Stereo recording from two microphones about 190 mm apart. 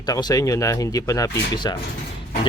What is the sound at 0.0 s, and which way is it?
Speech, 20° left (ahead or behind).